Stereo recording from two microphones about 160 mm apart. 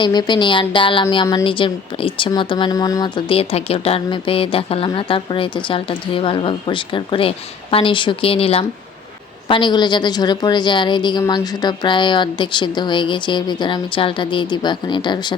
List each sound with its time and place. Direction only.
0.0 s a woman's voice: 25° left (ahead or behind)